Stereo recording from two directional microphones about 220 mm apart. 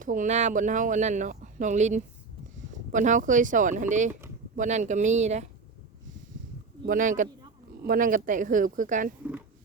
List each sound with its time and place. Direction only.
0.0 s speech: 35° right (ahead or behind)
6.8 s speech: 35° right (ahead or behind)